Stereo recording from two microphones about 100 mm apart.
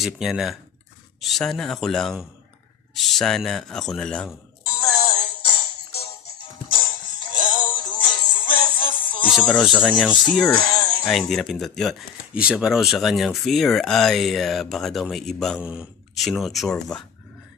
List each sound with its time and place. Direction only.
0.0 s speech: 5° right (ahead or behind)
4.7 s music: 50° left (ahead or behind)
6.7 s music: 60° left (ahead or behind)
9.5 s speech: 5° left (ahead or behind)
10.6 s music: 55° left (ahead or behind)
11.1 s speech: 5° left (ahead or behind)
15.6 s speech: 10° right (ahead or behind)
16.2 s speech: centre (ahead or behind)